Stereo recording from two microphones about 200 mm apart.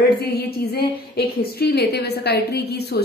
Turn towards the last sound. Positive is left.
turn(degrees=55)  # may be behind; listen again after turning